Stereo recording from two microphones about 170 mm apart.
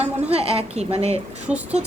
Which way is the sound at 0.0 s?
35° right (ahead or behind).